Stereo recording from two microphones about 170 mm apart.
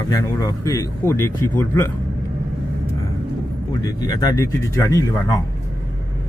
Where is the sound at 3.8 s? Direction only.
20° left (ahead or behind).